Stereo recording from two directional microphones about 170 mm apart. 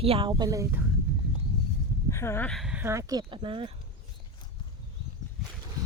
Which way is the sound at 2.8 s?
20° right (ahead or behind).